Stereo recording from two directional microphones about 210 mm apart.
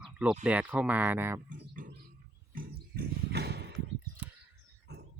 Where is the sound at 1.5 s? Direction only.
40° right (ahead or behind).